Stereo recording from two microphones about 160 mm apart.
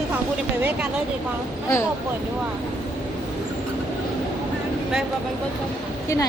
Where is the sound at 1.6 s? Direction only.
20° left (ahead or behind).